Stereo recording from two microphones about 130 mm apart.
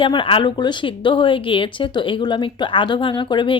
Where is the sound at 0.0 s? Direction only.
40° left (ahead or behind).